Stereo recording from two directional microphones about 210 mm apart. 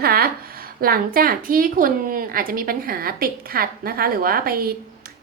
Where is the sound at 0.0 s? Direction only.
45° right (ahead or behind).